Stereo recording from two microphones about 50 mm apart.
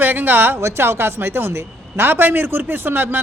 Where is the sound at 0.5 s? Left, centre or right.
Right.